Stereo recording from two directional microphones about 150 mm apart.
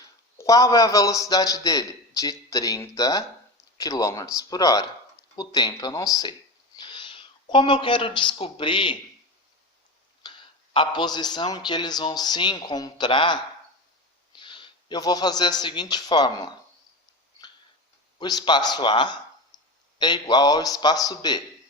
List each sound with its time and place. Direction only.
0.3 s a man's voice: 20° left (ahead or behind)
10.2 s a sound: 30° left (ahead or behind)
10.8 s a man's voice: 30° left (ahead or behind)
18.2 s a man's voice: 30° left (ahead or behind)